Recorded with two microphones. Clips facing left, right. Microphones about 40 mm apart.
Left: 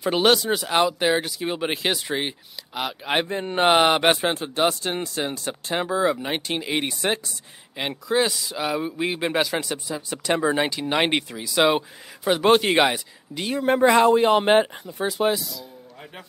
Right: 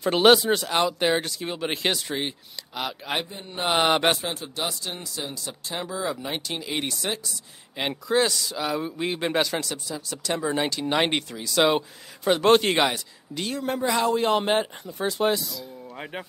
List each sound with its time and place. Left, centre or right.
0.0 s speech: centre
3.4 s speech: left
3.7 s speech: centre
4.2 s speech: left
6.7 s speech: centre
7.7 s speech: centre
9.6 s speech: centre
12.8 s speech: centre
13.7 s speech: left
14.1 s speech: centre
14.9 s speech: centre